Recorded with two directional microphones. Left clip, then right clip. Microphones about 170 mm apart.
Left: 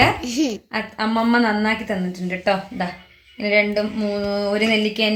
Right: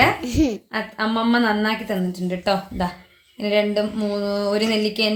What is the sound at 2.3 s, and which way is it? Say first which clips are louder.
A child's voice: left 2 dB; 30° right (ahead or behind).